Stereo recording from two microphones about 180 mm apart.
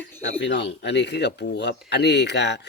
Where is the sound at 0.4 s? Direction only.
75° left (ahead or behind).